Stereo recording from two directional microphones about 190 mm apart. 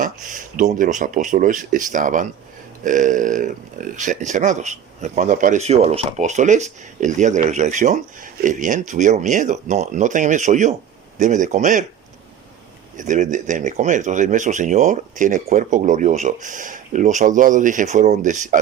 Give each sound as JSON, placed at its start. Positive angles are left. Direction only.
{"t": 0.0, "sound": "speech", "side_deg": -45}
{"t": 13.0, "sound": "speech", "side_deg": -40}